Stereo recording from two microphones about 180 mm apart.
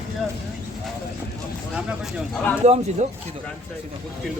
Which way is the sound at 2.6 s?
40° right (ahead or behind).